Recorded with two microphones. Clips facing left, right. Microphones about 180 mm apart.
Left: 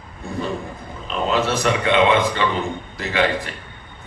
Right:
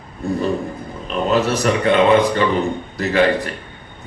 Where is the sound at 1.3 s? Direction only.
40° right (ahead or behind).